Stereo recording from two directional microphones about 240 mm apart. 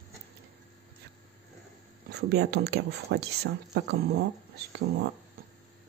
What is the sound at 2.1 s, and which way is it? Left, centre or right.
Speech, right.